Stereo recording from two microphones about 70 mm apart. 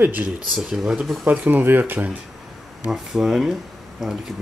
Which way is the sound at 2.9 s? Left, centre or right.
Centre.